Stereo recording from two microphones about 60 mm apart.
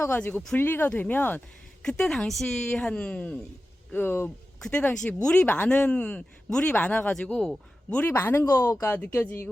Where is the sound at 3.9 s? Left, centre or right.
Left.